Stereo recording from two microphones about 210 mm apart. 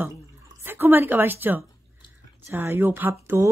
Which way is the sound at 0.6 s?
10° right (ahead or behind).